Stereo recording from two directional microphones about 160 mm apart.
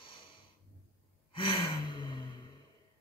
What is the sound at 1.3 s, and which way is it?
Gasp, 30° left (ahead or behind).